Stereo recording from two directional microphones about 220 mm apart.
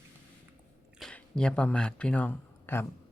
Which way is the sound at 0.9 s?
Centre (ahead or behind).